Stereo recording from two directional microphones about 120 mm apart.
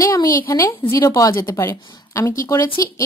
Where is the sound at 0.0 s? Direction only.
30° left (ahead or behind).